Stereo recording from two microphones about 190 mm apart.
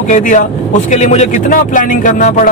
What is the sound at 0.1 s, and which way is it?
Speech, 40° left (ahead or behind).